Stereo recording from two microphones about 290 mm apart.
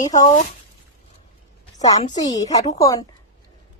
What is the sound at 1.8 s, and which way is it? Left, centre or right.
A woman's voice, centre.